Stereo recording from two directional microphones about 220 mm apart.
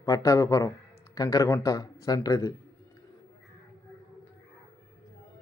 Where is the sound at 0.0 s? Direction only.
15° left (ahead or behind).